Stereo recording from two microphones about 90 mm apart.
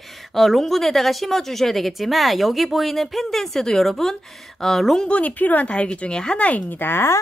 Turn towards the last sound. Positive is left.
turn(degrees=25)  # may be behind; listen again after turning